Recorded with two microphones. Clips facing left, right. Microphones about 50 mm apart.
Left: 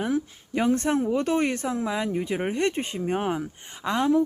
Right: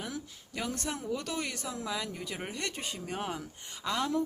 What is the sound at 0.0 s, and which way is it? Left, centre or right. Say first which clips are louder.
Speech: left 13 dB; left.